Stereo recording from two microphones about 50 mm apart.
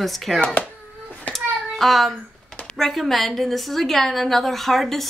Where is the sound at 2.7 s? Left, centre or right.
Centre.